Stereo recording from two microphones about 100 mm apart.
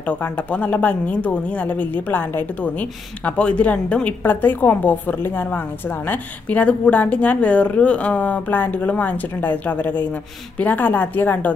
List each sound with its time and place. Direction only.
0.0 s speech: 15° left (ahead or behind)